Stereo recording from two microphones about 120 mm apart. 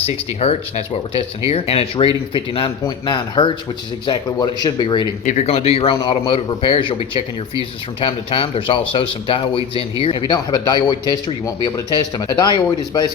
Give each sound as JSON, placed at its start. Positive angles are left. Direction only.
{"t": 0.0, "sound": "a man's voice", "side_deg": 55}
{"t": 5.2, "sound": "a man's voice", "side_deg": 80}